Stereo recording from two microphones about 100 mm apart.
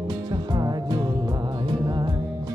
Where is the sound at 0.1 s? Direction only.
45° right (ahead or behind).